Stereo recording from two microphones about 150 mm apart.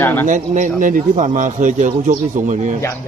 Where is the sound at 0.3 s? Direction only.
60° right (ahead or behind).